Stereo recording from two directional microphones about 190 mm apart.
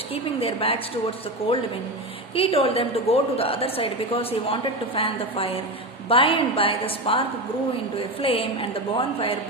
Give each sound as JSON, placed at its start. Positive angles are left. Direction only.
{"t": 0.1, "sound": "a woman's voice", "side_deg": 30}
{"t": 2.3, "sound": "a woman's voice", "side_deg": 30}